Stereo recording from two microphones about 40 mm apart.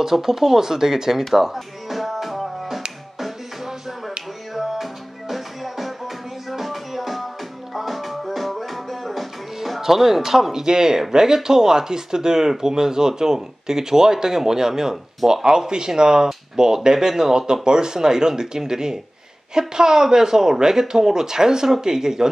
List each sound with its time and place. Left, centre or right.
0.0 s speech: centre
1.3 s music: centre
15.2 s speech: centre